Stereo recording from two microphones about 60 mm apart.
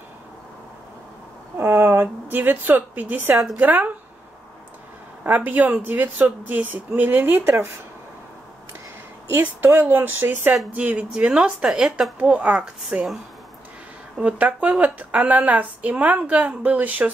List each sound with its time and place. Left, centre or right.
1.6 s a woman's voice: right
5.2 s speech: right
9.8 s a woman's voice: right; by 13.0 s centre
14.2 s a woman's voice: right